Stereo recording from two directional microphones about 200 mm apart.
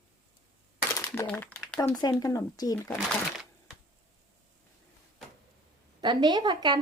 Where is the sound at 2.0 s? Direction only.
20° left (ahead or behind).